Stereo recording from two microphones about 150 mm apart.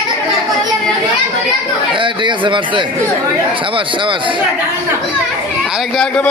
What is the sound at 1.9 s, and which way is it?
Speech, 35° right (ahead or behind).